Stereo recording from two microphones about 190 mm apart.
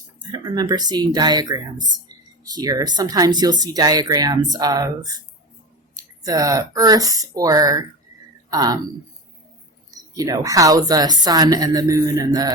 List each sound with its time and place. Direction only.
0.2 s speech: 20° right (ahead or behind)
10.2 s speech: 20° right (ahead or behind)